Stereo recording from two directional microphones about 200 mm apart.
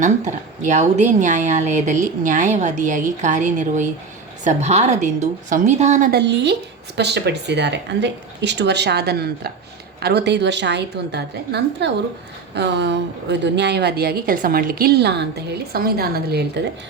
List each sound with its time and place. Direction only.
0.0 s a woman's voice: 40° right (ahead or behind)
6.1 s a woman's voice: 55° right (ahead or behind)